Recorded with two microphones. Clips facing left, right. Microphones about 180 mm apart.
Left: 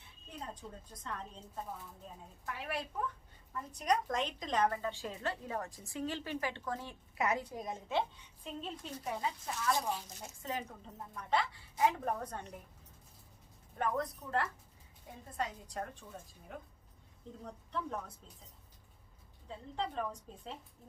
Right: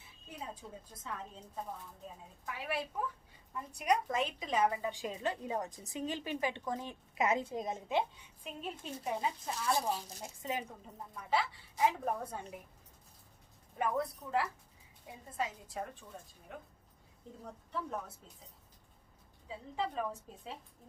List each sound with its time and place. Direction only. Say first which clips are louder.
0.0 s a woman's voice: even; 5° right (ahead or behind)
9.6 s a woman's voice: right 1 dB; 30° right (ahead or behind)
10.2 s a woman's voice: right 2 dB; 10° right (ahead or behind)
13.7 s a woman's voice: right 1 dB; 10° right (ahead or behind)
19.5 s a woman's voice: right 1 dB; 5° right (ahead or behind)